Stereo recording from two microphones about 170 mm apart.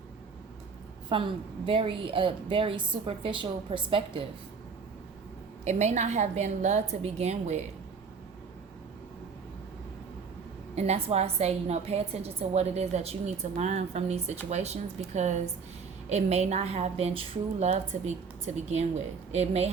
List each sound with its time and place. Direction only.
1.1 s a woman's voice: 30° right (ahead or behind)
5.6 s a woman's voice: 45° right (ahead or behind)
10.8 s a woman's voice: 40° right (ahead or behind)
19.3 s a woman's voice: 40° right (ahead or behind)